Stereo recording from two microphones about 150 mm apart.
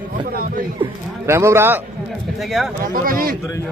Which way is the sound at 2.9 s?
70° right (ahead or behind).